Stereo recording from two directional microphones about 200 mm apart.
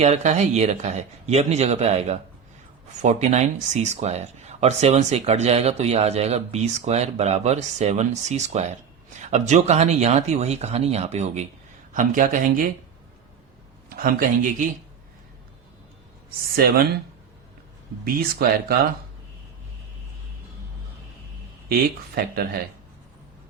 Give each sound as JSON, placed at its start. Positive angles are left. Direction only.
{"t": 0.0, "sound": "speech", "side_deg": -35}
{"t": 13.9, "sound": "speech", "side_deg": -45}
{"t": 16.5, "sound": "speech", "side_deg": -50}
{"t": 18.0, "sound": "speech", "side_deg": -50}
{"t": 21.7, "sound": "speech", "side_deg": -50}